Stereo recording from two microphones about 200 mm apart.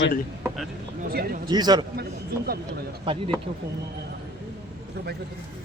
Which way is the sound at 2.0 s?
50° right (ahead or behind).